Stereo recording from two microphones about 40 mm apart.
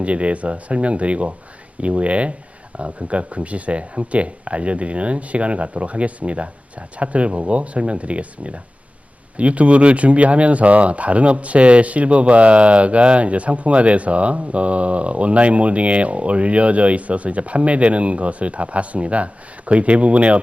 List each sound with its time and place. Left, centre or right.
0.0 s speech: right